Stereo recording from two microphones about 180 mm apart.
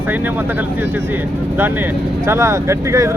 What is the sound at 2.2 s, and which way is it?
Speech, 15° right (ahead or behind).